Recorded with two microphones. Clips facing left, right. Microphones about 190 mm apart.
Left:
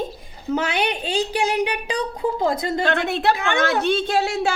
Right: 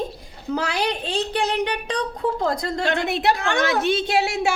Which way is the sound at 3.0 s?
20° right (ahead or behind).